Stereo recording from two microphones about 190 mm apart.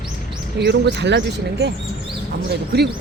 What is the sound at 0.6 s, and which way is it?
Speech, 60° right (ahead or behind).